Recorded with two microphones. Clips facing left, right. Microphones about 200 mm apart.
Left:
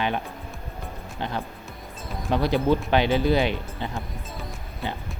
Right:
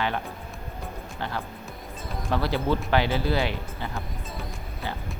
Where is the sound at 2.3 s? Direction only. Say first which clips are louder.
Left 4 dB; 15° left (ahead or behind).